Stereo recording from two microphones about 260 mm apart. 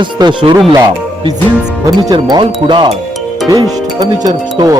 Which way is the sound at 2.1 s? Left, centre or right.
Centre.